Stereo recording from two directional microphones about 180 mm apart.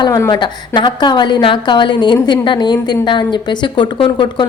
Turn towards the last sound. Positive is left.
turn(degrees=25)  # may be behind; listen again after turning